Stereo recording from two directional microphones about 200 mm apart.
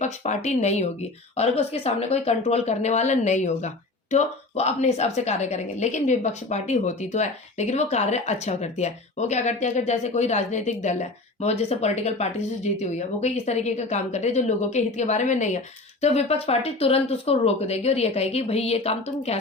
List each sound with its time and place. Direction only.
0.0 s a woman's voice: 35° left (ahead or behind)